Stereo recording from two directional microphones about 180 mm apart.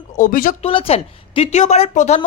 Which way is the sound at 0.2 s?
50° left (ahead or behind).